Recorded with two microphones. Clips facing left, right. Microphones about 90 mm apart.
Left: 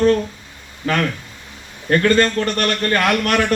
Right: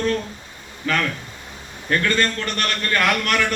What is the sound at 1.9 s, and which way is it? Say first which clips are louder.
A man's voice: left 6 dB; 40° left (ahead or behind).